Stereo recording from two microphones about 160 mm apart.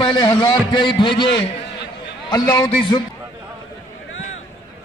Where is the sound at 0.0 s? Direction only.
30° left (ahead or behind).